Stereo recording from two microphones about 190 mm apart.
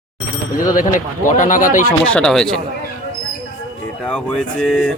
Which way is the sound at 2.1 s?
5° left (ahead or behind).